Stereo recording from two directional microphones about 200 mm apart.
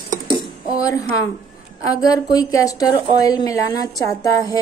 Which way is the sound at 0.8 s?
15° left (ahead or behind).